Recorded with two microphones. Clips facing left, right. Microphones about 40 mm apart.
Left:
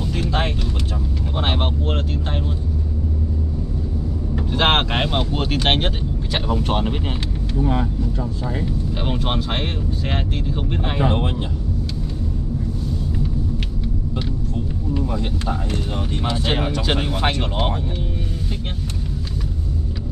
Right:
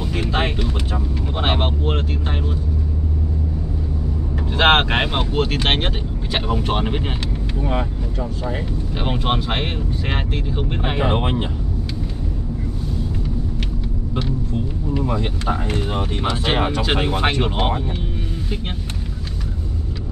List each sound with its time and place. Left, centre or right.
0.0 s vehicle: centre
4.5 s speech: centre
9.0 s speech: centre
11.0 s speech: right
14.5 s vehicle: centre
15.4 s speech: right